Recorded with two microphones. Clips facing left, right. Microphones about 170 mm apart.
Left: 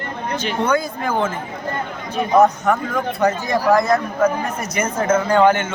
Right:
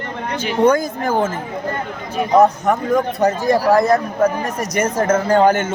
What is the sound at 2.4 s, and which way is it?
A man's voice, 35° right (ahead or behind).